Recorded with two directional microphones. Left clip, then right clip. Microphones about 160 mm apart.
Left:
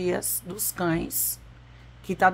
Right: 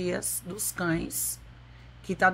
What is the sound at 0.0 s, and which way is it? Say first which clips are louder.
Speech: left 4 dB; 15° left (ahead or behind).